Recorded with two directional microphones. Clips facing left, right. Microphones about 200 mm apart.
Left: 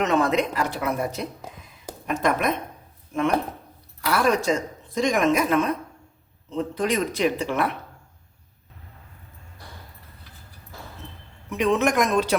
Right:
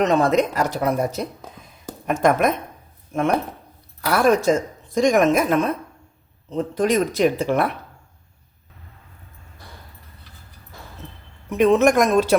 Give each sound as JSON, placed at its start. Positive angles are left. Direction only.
{"t": 0.0, "sound": "speech", "side_deg": -35}
{"t": 11.5, "sound": "speech", "side_deg": -45}